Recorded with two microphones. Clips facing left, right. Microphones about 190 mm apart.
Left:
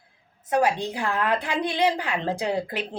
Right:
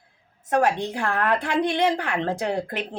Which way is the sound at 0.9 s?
15° left (ahead or behind).